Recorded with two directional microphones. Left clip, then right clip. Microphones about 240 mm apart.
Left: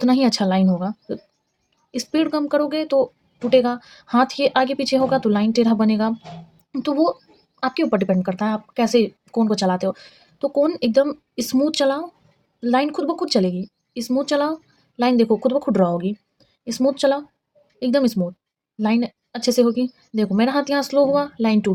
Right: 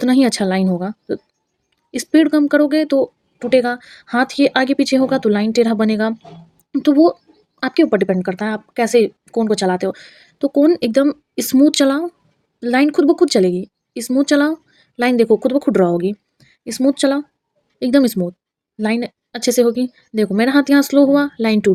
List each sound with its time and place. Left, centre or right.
0.0 s speech: right